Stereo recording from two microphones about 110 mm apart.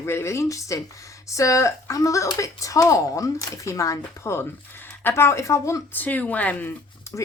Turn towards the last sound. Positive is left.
turn(degrees=15)  # may be behind; listen again after turning